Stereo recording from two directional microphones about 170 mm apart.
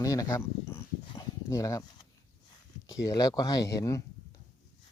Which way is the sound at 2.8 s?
20° left (ahead or behind).